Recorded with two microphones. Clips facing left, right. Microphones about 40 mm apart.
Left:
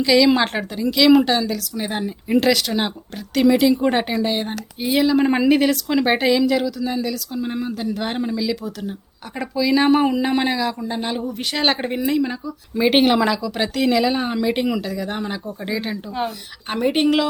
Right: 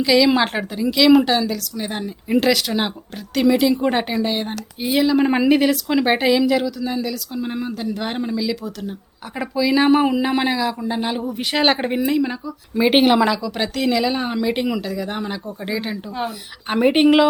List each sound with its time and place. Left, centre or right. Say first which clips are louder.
0.0 s speech: even; centre
1.7 s speech: left 2 dB; centre
16.8 s speech: right 4 dB; centre